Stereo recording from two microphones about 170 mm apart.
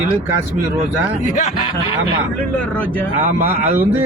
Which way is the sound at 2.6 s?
10° left (ahead or behind).